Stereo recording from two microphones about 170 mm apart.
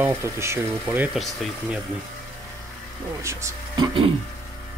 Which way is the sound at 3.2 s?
15° right (ahead or behind).